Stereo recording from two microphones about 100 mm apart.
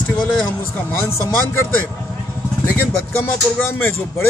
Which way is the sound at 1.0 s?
25° left (ahead or behind).